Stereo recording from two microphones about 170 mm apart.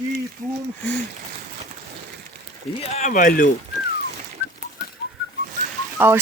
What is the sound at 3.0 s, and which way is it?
Speech, 50° left (ahead or behind).